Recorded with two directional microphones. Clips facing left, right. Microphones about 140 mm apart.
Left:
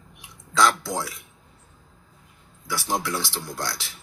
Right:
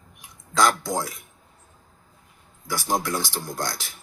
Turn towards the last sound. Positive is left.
turn(degrees=-45)  # may be behind; listen again after turning